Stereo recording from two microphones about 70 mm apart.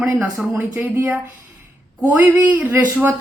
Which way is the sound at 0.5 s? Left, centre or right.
Right.